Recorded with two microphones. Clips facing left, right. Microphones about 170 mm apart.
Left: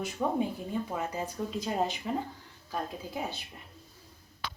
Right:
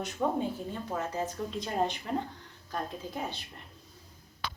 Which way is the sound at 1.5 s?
5° left (ahead or behind).